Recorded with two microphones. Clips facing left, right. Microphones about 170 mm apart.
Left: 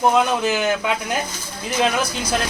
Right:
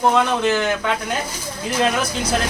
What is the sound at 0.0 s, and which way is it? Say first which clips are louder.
Speech: even; 5° left (ahead or behind).